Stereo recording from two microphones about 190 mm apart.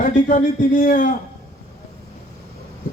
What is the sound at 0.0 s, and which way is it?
A man's voice, 45° left (ahead or behind).